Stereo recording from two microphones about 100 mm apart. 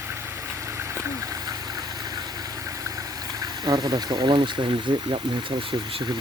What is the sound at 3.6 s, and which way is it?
Speech, 45° right (ahead or behind).